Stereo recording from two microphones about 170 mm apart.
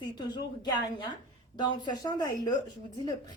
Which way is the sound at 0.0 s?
25° left (ahead or behind).